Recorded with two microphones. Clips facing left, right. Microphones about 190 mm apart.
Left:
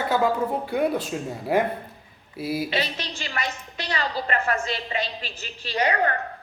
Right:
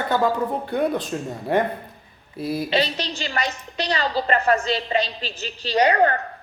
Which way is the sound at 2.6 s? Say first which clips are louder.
Right 5 dB; 30° right (ahead or behind).